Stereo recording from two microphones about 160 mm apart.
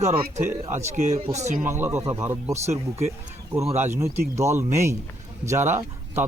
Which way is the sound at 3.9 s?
20° right (ahead or behind).